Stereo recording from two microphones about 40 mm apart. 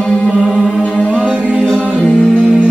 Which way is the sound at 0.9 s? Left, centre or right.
Centre.